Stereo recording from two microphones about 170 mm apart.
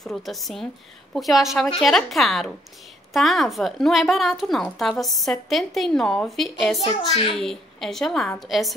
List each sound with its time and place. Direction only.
0.0 s a woman's voice: centre (ahead or behind)
6.9 s a child's voice: 30° left (ahead or behind)
7.3 s a woman's voice: centre (ahead or behind)